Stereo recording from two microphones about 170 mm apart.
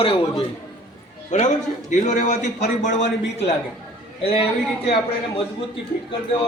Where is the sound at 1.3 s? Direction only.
45° left (ahead or behind).